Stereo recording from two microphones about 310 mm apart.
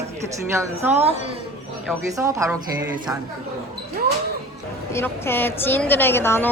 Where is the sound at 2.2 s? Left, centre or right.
Centre.